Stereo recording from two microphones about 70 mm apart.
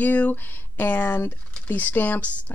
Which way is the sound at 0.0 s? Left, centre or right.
Left.